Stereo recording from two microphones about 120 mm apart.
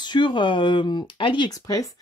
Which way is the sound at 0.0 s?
40° left (ahead or behind).